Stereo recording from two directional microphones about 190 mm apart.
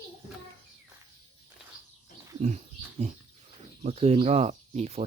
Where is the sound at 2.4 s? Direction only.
35° right (ahead or behind).